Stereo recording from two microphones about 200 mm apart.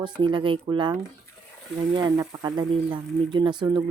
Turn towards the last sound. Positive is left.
turn(degrees=-20)  # may be behind; listen again after turning